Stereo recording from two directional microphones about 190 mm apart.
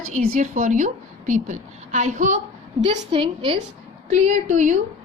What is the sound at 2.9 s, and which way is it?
Speech, 30° right (ahead or behind).